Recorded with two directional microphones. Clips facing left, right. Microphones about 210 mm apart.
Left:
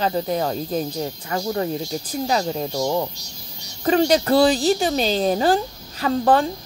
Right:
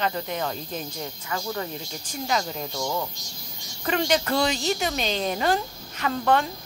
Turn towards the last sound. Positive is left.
turn(degrees=35)  # may be behind; listen again after turning